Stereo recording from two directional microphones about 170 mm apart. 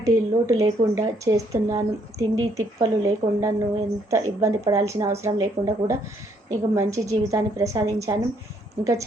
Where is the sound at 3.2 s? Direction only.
40° right (ahead or behind).